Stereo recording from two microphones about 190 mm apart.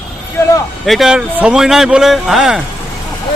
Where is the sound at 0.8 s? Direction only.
Centre (ahead or behind).